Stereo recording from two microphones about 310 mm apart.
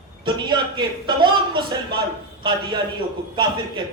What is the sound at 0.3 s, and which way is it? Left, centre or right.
Speech, centre.